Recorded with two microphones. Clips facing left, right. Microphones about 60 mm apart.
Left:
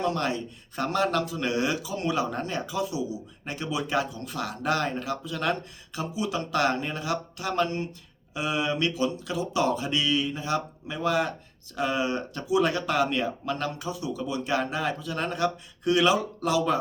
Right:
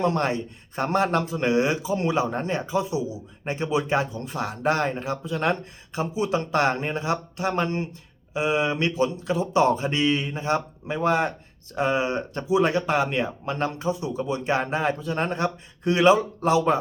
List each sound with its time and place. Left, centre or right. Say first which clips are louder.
0.0 s a man's voice: right 4 dB; right